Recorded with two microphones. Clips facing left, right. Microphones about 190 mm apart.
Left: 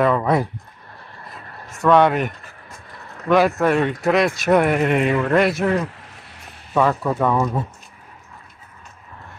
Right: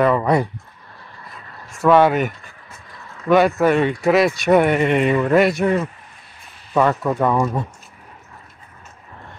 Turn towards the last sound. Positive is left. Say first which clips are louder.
# right 1 dB
turn(degrees=0)  # may be behind; listen again after turning